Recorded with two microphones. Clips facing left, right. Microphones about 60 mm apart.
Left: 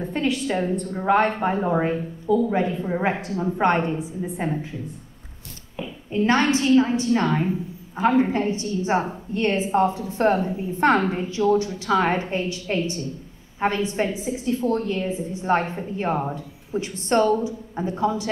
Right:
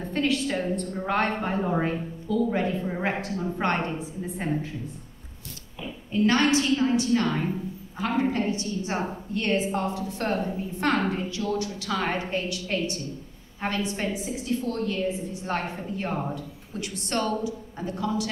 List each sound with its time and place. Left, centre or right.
0.1 s a woman's voice: centre
6.1 s a woman's voice: left